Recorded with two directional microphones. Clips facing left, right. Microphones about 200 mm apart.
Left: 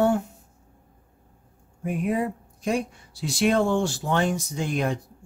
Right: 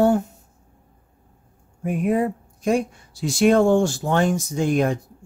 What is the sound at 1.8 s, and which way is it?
Speech, 50° right (ahead or behind).